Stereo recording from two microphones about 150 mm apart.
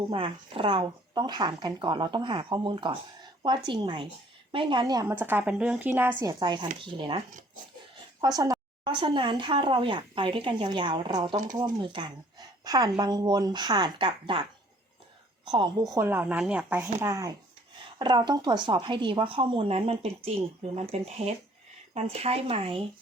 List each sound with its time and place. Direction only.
0.1 s speech: 35° right (ahead or behind)
5.0 s a woman's voice: 15° right (ahead or behind)
6.4 s speech: 30° right (ahead or behind)
8.2 s a woman's voice: 25° right (ahead or behind)
15.4 s a woman's voice: 35° right (ahead or behind)
15.9 s a woman's voice: 15° right (ahead or behind)
17.0 s a woman's voice: 20° right (ahead or behind); by 22.8 s 40° right (ahead or behind)